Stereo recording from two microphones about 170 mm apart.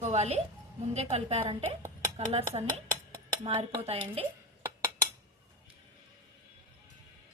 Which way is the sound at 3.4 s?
40° right (ahead or behind).